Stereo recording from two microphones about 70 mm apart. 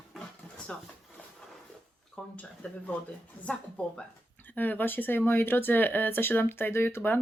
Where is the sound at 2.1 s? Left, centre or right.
Centre.